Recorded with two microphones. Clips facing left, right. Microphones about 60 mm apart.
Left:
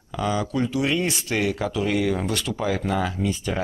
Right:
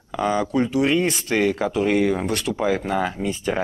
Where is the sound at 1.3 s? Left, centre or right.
Centre.